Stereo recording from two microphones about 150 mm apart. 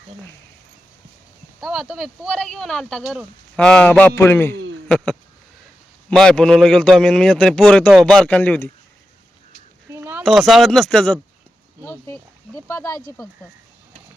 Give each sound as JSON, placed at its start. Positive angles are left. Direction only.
{"t": 1.6, "sound": "a man's voice", "side_deg": 0}
{"t": 9.9, "sound": "a sound", "side_deg": -15}
{"t": 10.2, "sound": "a man's voice", "side_deg": 0}
{"t": 11.8, "sound": "a man's voice", "side_deg": 15}